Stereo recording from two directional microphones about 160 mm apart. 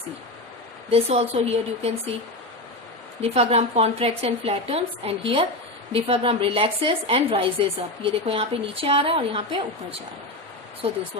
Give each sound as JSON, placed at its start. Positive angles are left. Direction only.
{"t": 0.9, "sound": "a woman's voice", "side_deg": -40}
{"t": 3.2, "sound": "a woman's voice", "side_deg": -40}